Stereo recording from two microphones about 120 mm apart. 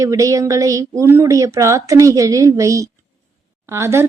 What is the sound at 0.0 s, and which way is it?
Speech, 25° right (ahead or behind).